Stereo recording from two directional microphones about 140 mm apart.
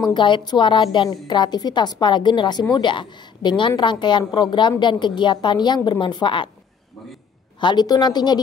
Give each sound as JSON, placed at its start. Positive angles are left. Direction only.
{"t": 0.0, "sound": "a woman's voice", "side_deg": 35}
{"t": 7.6, "sound": "a woman's voice", "side_deg": 30}